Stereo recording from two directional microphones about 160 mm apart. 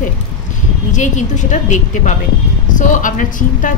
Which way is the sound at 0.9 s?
50° left (ahead or behind).